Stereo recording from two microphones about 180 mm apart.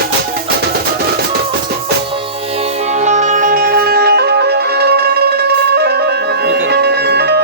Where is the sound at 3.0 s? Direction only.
40° right (ahead or behind).